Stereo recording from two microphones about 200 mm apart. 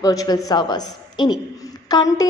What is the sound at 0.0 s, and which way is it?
A woman's voice, 20° left (ahead or behind).